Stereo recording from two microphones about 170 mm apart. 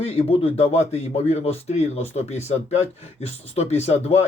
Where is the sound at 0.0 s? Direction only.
35° left (ahead or behind).